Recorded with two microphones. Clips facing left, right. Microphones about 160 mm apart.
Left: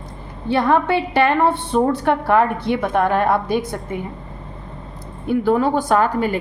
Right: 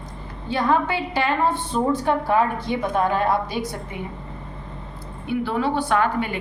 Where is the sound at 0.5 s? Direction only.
60° left (ahead or behind).